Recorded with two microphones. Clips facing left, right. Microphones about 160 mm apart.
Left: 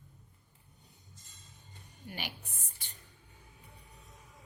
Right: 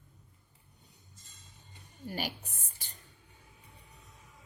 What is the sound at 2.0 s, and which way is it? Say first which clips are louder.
Music: right 6 dB; 40° right (ahead or behind).